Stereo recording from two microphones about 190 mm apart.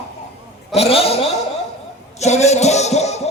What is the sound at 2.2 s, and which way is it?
Music, 35° left (ahead or behind).